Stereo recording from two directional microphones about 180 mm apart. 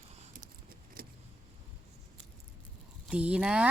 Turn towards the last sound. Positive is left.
turn(degrees=-5)  # may be behind; listen again after turning